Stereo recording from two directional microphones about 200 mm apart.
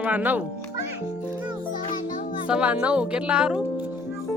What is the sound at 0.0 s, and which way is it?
Speech, 10° right (ahead or behind).